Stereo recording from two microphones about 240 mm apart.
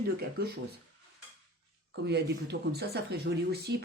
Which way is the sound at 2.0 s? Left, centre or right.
Right.